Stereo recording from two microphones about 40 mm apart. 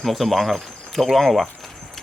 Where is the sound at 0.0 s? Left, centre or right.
Centre.